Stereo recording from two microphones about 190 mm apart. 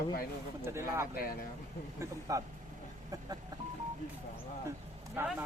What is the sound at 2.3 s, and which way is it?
Speech, 20° right (ahead or behind).